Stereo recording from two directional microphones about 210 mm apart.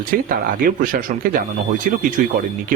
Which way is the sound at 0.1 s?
40° right (ahead or behind).